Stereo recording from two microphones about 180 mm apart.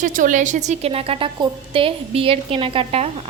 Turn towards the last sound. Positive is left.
turn(degrees=-30)  # may be behind; listen again after turning